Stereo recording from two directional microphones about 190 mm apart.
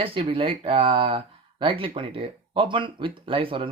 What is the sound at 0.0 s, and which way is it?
Speech, 30° right (ahead or behind).